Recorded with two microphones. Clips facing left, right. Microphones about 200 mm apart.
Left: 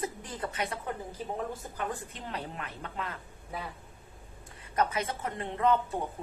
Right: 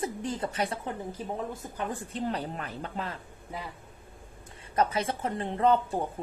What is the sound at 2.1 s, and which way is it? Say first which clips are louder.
A woman's voice: right 7 dB; 35° right (ahead or behind).